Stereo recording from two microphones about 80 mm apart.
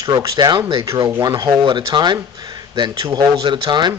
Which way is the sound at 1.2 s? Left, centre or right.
Right.